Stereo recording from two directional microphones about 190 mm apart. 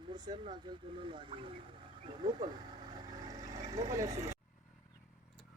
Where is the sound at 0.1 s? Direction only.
25° right (ahead or behind).